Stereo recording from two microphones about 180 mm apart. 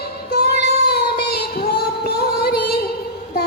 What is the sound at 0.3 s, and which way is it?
Child singing, 65° left (ahead or behind).